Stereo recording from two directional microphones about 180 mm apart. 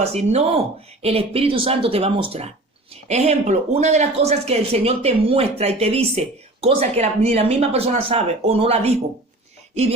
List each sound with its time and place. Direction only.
0.0 s speech: 35° right (ahead or behind)